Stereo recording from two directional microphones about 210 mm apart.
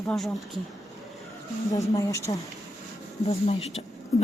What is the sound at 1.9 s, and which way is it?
Speech, 15° left (ahead or behind).